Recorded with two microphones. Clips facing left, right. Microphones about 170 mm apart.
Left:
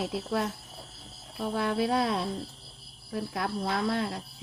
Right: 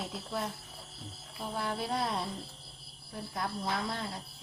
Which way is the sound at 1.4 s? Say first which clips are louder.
Left 7 dB; 70° left (ahead or behind).